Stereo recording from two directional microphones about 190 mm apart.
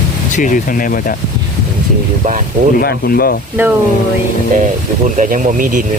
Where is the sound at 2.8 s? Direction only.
50° left (ahead or behind).